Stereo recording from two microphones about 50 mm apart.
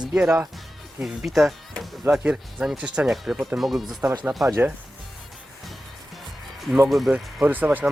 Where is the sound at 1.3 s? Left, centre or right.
Centre.